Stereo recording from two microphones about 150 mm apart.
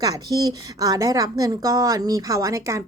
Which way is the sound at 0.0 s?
25° right (ahead or behind).